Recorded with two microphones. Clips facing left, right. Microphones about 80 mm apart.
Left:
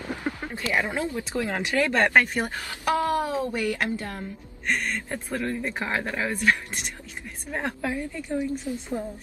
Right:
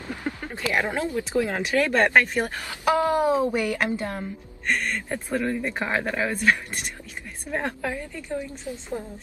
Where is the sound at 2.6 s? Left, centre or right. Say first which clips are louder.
Right 3 dB; centre.